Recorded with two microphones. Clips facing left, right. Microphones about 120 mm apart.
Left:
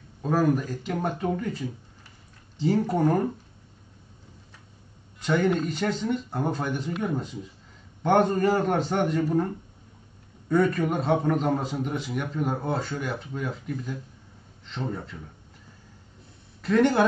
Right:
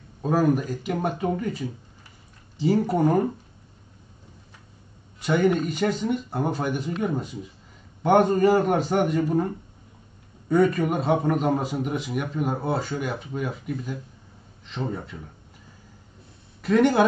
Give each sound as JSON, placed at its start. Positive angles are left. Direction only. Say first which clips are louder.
{"t": 0.2, "sound": "a man's voice", "louder": "right 2 dB", "side_deg": -15}
{"t": 5.2, "sound": "a man's voice", "louder": "right 2 dB", "side_deg": -10}
{"t": 10.5, "sound": "a man's voice", "louder": "right 2 dB", "side_deg": -15}
{"t": 16.6, "sound": "a man's voice", "louder": "right 2 dB", "side_deg": -15}